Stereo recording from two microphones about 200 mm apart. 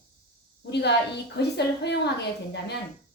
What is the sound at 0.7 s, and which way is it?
A woman's voice, 55° left (ahead or behind).